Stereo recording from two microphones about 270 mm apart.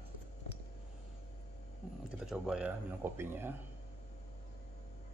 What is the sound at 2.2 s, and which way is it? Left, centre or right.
Speech, centre.